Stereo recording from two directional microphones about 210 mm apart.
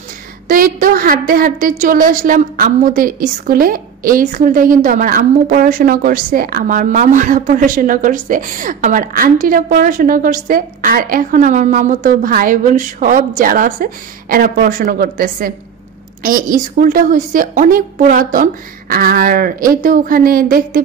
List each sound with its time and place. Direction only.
0.5 s a woman's voice: 40° right (ahead or behind)